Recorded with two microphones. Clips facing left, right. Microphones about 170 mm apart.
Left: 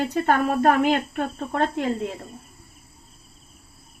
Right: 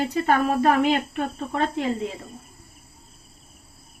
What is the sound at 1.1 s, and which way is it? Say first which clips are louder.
Speech: even; 45° left (ahead or behind).